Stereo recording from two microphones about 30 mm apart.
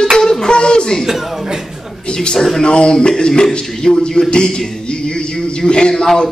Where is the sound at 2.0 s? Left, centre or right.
Left.